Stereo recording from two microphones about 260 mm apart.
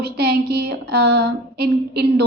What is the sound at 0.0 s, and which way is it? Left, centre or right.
Speech, right.